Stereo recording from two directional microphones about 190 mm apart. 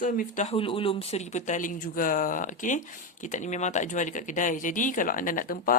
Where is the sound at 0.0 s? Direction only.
40° left (ahead or behind).